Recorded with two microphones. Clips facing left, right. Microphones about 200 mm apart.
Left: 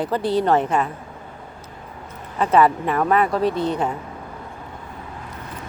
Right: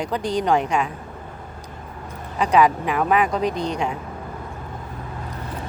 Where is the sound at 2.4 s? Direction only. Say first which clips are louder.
Left 1 dB; centre (ahead or behind).